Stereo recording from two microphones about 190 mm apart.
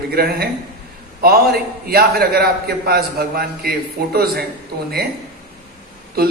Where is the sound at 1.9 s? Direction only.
50° right (ahead or behind).